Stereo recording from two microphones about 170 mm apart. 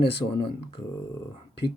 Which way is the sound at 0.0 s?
30° left (ahead or behind).